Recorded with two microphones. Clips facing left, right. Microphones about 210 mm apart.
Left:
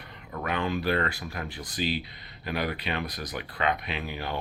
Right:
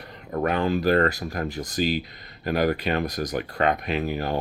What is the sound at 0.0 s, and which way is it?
Speech, 40° right (ahead or behind).